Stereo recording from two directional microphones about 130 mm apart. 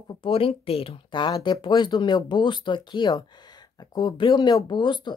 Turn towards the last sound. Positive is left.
turn(degrees=35)  # may be behind; listen again after turning